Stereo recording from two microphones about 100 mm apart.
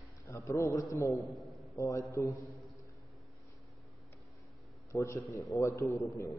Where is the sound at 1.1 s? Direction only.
Centre (ahead or behind).